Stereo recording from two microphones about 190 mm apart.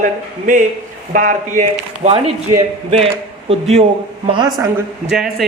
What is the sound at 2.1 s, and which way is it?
Speech, 30° right (ahead or behind).